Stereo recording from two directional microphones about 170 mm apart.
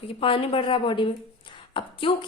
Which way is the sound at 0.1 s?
30° left (ahead or behind).